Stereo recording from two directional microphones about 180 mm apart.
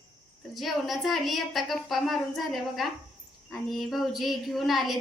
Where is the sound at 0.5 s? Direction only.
Centre (ahead or behind).